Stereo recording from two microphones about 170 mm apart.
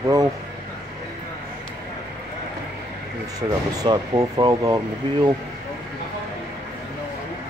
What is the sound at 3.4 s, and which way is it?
Speech, 25° right (ahead or behind).